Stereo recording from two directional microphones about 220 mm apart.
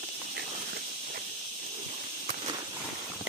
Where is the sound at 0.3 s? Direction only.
50° right (ahead or behind).